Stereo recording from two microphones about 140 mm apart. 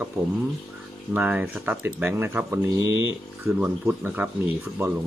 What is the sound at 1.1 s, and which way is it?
Speech, 10° right (ahead or behind).